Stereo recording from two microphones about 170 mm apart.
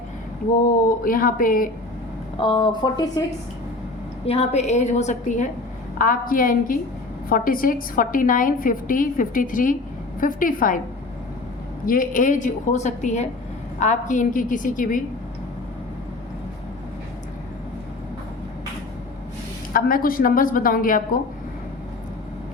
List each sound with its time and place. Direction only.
0.9 s a woman's voice: 55° left (ahead or behind)
2.4 s speech: 30° left (ahead or behind)
4.3 s a woman's voice: 40° left (ahead or behind)
6.0 s a woman's voice: 55° left (ahead or behind)
11.9 s a woman's voice: 50° left (ahead or behind)
19.7 s a woman's voice: 55° left (ahead or behind)